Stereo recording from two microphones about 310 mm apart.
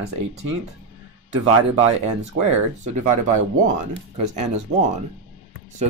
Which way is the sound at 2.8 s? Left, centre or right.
Right.